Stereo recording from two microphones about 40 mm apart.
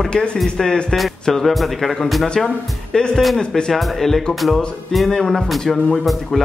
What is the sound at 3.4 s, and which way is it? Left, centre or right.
Speech, centre.